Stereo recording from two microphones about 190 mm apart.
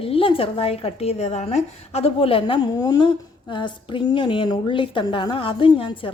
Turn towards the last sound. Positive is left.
turn(degrees=25)  # may be behind; listen again after turning